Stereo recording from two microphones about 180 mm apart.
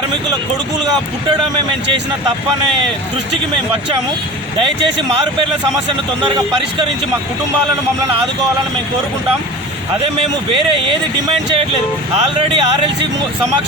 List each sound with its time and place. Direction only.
12.5 s speech: 30° right (ahead or behind)